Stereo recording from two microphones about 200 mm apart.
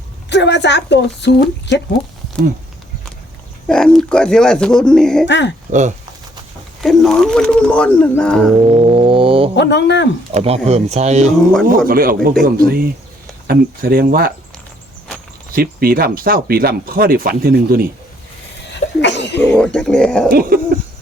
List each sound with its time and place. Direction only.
0.3 s a woman's voice: 60° left (ahead or behind)
3.7 s speech: 5° left (ahead or behind)
5.2 s a woman's voice: 60° left (ahead or behind)
5.7 s speech: 40° right (ahead or behind)
6.8 s speech: centre (ahead or behind)
8.6 s a sound: 25° right (ahead or behind)
9.6 s a woman's voice: 60° left (ahead or behind)
10.3 s speech: 30° right (ahead or behind)
11.9 s speech: 45° right (ahead or behind)
15.5 s speech: 50° right (ahead or behind)
19.0 s a sound: 60° left (ahead or behind)
19.5 s speech: 5° left (ahead or behind)
20.3 s speech: 50° right (ahead or behind)